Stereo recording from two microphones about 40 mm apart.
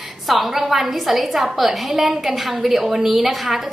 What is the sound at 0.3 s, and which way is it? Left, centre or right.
A woman's voice, centre.